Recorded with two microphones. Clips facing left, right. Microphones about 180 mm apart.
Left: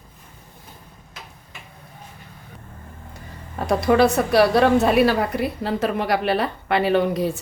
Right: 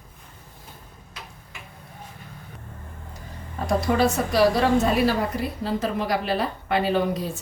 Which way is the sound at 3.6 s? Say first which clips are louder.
Left 4 dB; 65° left (ahead or behind).